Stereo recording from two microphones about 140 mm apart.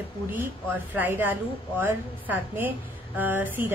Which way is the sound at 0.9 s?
15° right (ahead or behind).